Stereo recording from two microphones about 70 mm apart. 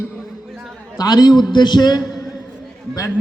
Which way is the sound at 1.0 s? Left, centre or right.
Left.